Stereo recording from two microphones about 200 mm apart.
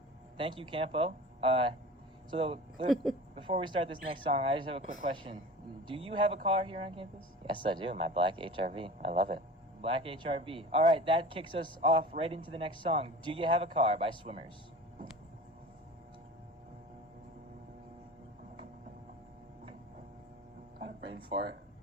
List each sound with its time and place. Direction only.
0.3 s speech: 25° right (ahead or behind)
2.9 s speech: centre (ahead or behind)
3.3 s speech: 25° right (ahead or behind)
21.3 s speech: 25° right (ahead or behind)